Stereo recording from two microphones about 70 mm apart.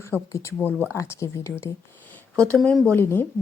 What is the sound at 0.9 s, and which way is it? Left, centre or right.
Speech, left.